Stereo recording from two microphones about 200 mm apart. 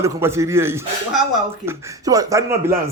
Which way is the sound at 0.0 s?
15° right (ahead or behind).